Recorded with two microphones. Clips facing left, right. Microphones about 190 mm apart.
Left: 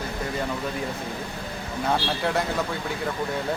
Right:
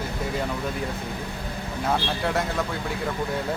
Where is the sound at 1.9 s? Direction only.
Centre (ahead or behind).